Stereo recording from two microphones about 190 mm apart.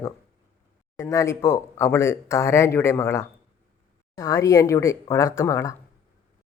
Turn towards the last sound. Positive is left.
turn(degrees=15)  # may be behind; listen again after turning